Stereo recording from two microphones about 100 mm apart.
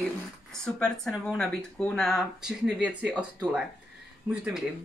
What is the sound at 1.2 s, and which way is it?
Speech, 5° left (ahead or behind).